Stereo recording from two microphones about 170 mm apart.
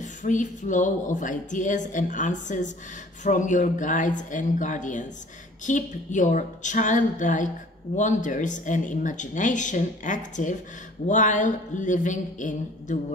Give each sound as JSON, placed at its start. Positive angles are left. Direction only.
{"t": 0.0, "sound": "speech", "side_deg": 45}